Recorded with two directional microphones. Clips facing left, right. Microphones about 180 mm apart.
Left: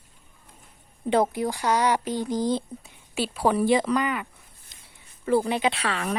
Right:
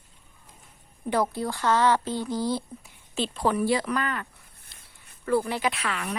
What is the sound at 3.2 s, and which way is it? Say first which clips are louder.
Speech: left 2 dB; 10° left (ahead or behind).